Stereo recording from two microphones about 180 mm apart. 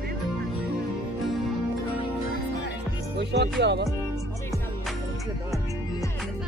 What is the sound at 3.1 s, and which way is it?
Music, 70° right (ahead or behind).